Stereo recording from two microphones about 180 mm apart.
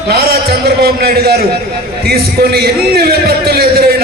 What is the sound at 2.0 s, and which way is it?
A man's voice, 60° right (ahead or behind).